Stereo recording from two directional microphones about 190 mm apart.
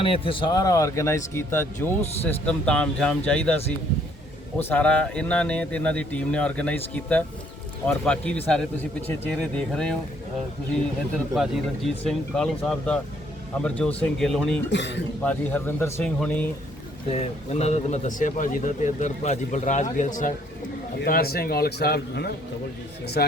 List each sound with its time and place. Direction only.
0.0 s speech: 30° left (ahead or behind); by 10.0 s 5° left (ahead or behind)
11.3 s speech: centre (ahead or behind)
14.7 s a man's voice: 65° left (ahead or behind)
15.2 s speech: 10° left (ahead or behind)
17.1 s speech: 35° left (ahead or behind)
21.0 s speech: 55° left (ahead or behind)